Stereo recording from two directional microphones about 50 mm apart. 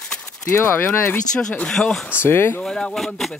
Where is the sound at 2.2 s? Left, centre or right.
Left.